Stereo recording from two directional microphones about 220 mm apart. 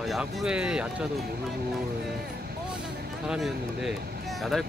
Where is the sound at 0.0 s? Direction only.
Centre (ahead or behind).